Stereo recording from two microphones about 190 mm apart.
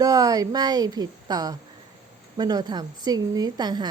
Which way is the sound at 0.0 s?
20° right (ahead or behind).